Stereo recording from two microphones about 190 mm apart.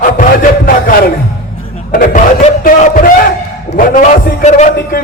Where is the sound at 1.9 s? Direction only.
45° left (ahead or behind).